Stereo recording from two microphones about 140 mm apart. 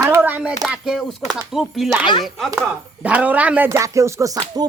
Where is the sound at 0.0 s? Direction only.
15° right (ahead or behind).